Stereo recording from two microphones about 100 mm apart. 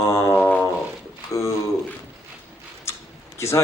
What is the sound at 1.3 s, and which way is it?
Speech, 30° left (ahead or behind).